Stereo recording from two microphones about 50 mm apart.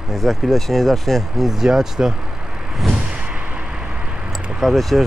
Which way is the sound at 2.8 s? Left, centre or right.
Centre.